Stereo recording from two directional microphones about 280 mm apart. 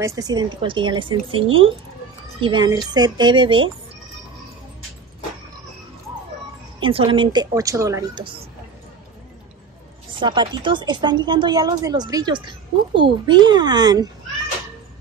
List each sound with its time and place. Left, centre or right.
0.0 s speech: centre
6.8 s speech: centre
10.1 s speech: centre